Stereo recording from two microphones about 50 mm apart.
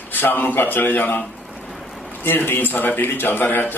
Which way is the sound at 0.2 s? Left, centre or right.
Left.